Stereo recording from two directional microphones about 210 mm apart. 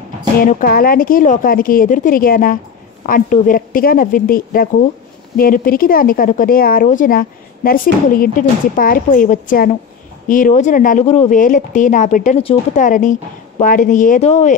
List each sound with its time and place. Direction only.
0.4 s a woman's voice: 40° left (ahead or behind)